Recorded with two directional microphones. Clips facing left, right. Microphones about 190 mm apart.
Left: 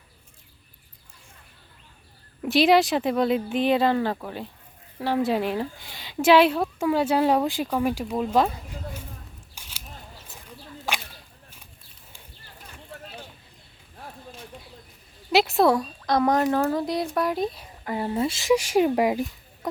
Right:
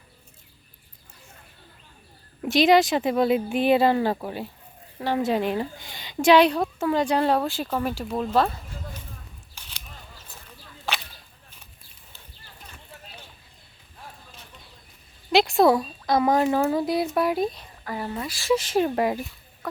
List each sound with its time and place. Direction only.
2.4 s speech: centre (ahead or behind)
4.9 s a woman's voice: centre (ahead or behind)
9.6 s a sound: 10° left (ahead or behind)
10.8 s whip: 10° left (ahead or behind)
15.3 s speech: 5° left (ahead or behind)
17.8 s a woman's voice: 25° left (ahead or behind)